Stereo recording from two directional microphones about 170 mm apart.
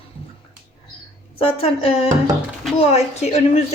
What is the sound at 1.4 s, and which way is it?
A woman's voice, 35° left (ahead or behind).